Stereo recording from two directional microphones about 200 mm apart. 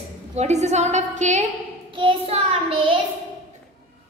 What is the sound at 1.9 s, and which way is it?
Child singing, 30° right (ahead or behind).